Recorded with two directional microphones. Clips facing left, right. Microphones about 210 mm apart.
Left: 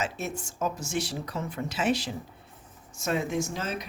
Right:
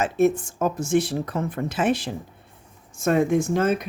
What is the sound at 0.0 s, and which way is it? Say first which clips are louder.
Speech: right 13 dB; 55° right (ahead or behind).